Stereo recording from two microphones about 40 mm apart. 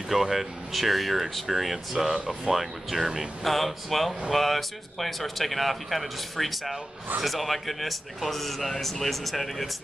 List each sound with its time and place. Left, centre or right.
0.1 s speech: centre
2.1 s speech: centre
2.5 s speech: centre